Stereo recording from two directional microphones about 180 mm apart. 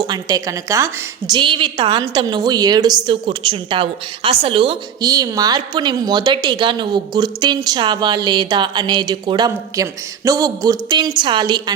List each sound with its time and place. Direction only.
0.1 s a woman's voice: 20° right (ahead or behind)